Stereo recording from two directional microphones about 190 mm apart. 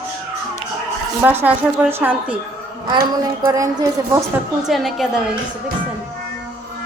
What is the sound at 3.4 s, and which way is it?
Speech, 15° right (ahead or behind).